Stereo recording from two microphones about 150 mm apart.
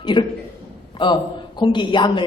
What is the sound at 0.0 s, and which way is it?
A man's voice, 30° left (ahead or behind).